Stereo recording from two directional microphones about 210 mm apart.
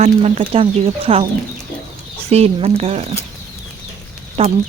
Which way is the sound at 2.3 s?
30° right (ahead or behind).